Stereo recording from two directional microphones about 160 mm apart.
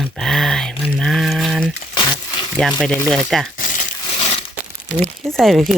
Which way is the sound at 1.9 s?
30° left (ahead or behind).